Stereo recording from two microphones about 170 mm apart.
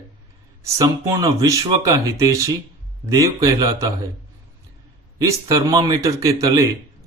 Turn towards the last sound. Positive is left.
turn(degrees=-20)  # may be behind; listen again after turning